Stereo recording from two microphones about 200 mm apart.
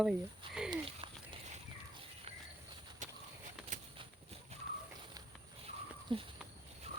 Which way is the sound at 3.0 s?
40° right (ahead or behind).